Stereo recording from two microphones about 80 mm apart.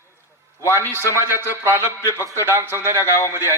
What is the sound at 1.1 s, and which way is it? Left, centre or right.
A man's voice, right.